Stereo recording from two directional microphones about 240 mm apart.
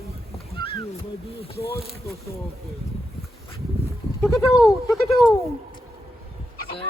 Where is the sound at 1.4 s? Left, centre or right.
Left.